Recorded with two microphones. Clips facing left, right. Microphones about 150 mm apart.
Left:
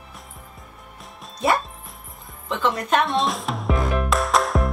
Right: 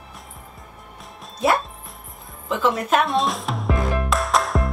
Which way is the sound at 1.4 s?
Centre (ahead or behind).